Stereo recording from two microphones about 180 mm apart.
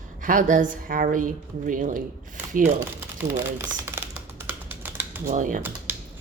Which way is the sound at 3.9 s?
15° right (ahead or behind).